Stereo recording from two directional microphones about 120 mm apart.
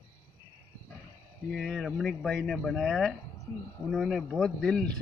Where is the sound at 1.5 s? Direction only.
Centre (ahead or behind).